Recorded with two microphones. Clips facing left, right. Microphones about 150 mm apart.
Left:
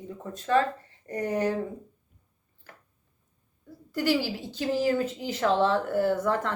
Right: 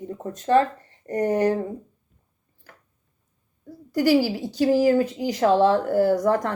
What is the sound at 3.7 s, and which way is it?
A woman's voice, 40° right (ahead or behind).